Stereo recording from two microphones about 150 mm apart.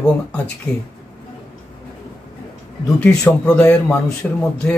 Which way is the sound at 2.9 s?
10° left (ahead or behind).